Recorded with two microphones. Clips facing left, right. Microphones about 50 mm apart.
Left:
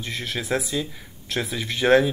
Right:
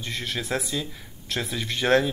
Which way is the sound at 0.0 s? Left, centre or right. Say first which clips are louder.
Left 1 dB; centre.